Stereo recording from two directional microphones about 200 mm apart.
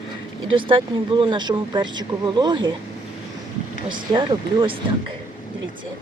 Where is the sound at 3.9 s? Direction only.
20° right (ahead or behind).